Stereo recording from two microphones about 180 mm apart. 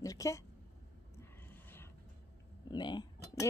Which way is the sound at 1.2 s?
10° left (ahead or behind).